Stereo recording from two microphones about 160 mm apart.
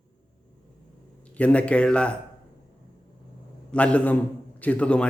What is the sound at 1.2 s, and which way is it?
Speech, 10° left (ahead or behind).